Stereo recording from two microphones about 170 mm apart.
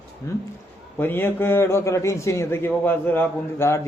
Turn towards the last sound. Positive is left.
turn(degrees=15)  # may be behind; listen again after turning